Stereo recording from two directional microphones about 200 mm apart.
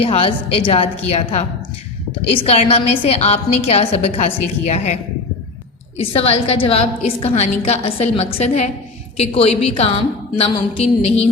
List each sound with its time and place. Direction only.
0.0 s a woman's voice: 30° left (ahead or behind)
6.0 s a woman's voice: 30° left (ahead or behind)